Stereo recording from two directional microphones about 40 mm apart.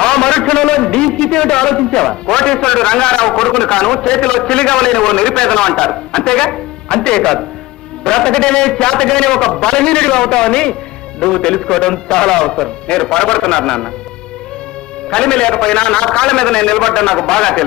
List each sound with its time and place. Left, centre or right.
0.0 s a sound: left
1.2 s a man's voice: centre
15.0 s a man's voice: centre